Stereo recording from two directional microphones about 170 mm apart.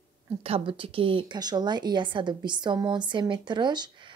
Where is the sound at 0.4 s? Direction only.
30° right (ahead or behind).